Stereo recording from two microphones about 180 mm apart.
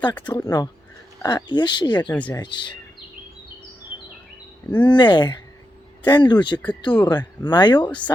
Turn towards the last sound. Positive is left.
turn(degrees=25)  # may be behind; listen again after turning